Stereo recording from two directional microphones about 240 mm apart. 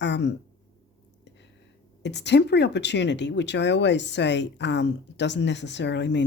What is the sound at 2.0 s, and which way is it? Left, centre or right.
Speech, left.